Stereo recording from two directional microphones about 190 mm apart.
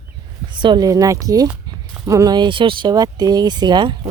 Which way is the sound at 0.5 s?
25° right (ahead or behind).